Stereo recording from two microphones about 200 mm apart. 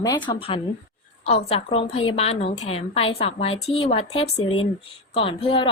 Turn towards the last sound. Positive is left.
turn(degrees=25)  # may be behind; listen again after turning